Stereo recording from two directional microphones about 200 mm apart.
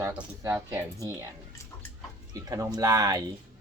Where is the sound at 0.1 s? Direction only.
5° right (ahead or behind).